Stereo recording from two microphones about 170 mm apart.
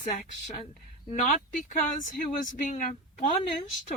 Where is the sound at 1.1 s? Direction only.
50° left (ahead or behind).